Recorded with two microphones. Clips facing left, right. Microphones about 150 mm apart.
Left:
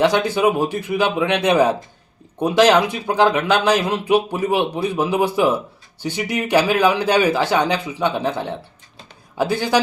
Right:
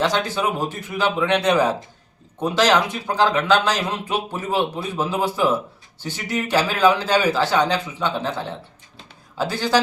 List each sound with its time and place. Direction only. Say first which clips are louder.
0.1 s a man's voice: left 5 dB; 15° left (ahead or behind)